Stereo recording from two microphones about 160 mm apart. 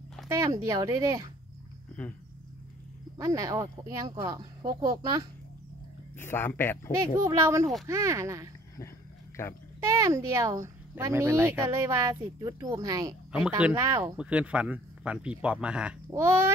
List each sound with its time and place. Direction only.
0.3 s speech: 20° right (ahead or behind)
3.2 s speech: 20° right (ahead or behind)
6.1 s speech: 15° left (ahead or behind)
7.0 s speech: 20° right (ahead or behind)
9.8 s speech: 20° right (ahead or behind)
13.3 s speech: 5° right (ahead or behind)
13.7 s speech: 20° right (ahead or behind)
14.1 s speech: 5° right (ahead or behind)